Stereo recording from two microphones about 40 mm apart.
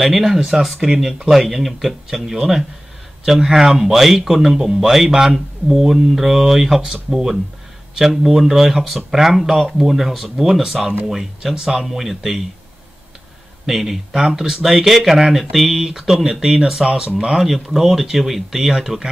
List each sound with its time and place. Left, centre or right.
0.0 s speech: centre
13.7 s speech: centre; by 17.4 s right
17.4 s speech: centre